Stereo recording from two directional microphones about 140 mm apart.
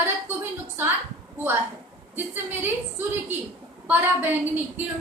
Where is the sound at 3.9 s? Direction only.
15° right (ahead or behind).